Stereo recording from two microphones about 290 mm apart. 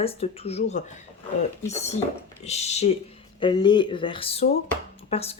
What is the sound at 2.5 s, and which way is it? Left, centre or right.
Speech, left.